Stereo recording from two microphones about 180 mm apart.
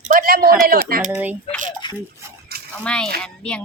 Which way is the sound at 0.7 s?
55° right (ahead or behind).